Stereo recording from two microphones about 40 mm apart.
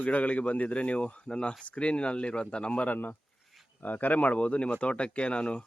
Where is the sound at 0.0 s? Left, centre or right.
Left.